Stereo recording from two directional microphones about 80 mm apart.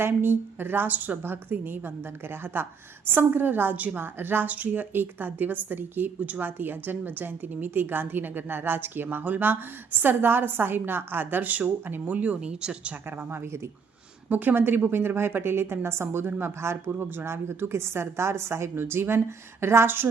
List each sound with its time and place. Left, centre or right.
0.0 s a woman's voice: right
13.1 s a woman's voice: right
14.3 s a woman's voice: right